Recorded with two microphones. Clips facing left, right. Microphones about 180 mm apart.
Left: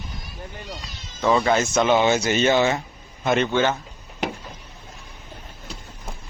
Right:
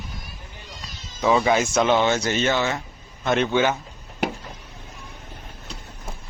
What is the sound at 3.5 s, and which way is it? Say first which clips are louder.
Speech: even; 10° right (ahead or behind).